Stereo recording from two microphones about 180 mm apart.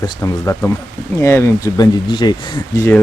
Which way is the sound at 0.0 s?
15° left (ahead or behind).